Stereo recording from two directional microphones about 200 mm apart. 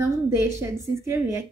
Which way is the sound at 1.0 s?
15° right (ahead or behind).